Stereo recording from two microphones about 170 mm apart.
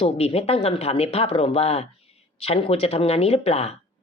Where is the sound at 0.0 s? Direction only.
35° left (ahead or behind).